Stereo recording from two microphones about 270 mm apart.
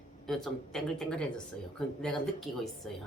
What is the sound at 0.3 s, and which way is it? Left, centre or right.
Speech, centre.